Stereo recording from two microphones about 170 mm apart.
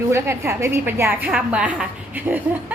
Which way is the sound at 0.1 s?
15° right (ahead or behind).